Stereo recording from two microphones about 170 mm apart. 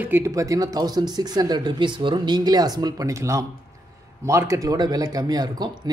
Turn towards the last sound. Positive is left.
turn(degrees=-25)  # may be behind; listen again after turning